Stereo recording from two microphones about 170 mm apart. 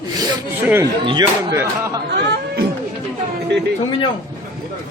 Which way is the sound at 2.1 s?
75° right (ahead or behind).